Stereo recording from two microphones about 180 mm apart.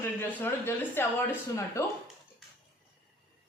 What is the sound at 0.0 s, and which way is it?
Speech, 10° left (ahead or behind).